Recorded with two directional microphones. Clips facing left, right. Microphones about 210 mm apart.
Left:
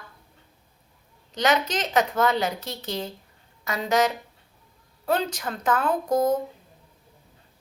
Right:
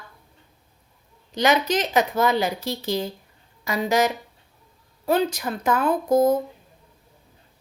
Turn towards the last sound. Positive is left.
turn(degrees=-10)  # may be behind; listen again after turning